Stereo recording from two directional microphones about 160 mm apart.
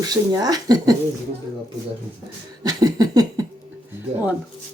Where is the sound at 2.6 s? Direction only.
25° right (ahead or behind).